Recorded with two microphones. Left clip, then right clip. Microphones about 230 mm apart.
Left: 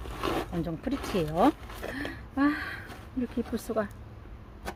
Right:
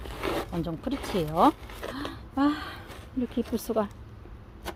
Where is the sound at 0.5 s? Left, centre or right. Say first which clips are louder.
Right 1 dB; centre.